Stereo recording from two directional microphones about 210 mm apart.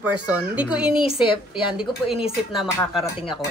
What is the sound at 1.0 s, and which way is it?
Speech, 25° left (ahead or behind).